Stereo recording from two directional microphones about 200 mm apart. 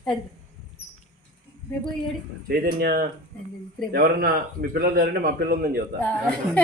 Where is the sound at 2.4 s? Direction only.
50° right (ahead or behind).